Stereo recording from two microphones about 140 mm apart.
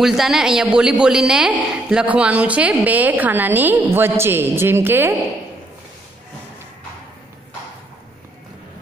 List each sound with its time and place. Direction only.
0.0 s a woman's voice: centre (ahead or behind)